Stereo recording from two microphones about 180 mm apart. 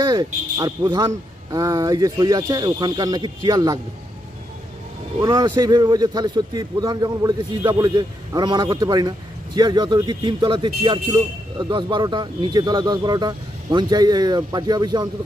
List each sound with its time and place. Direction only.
0.0 s a man's voice: 20° right (ahead or behind)
5.2 s a man's voice: 20° right (ahead or behind)